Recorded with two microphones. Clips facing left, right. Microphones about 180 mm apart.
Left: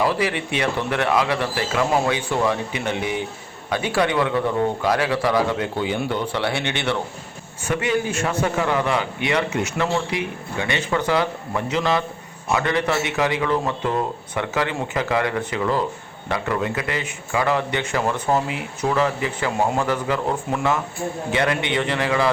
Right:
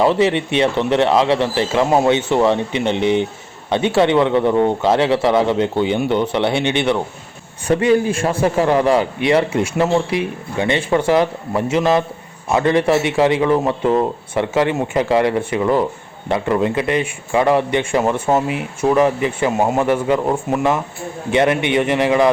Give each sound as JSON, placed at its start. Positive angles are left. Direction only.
{"t": 0.0, "sound": "a man's voice", "side_deg": -25}
{"t": 7.7, "sound": "a man's voice", "side_deg": -35}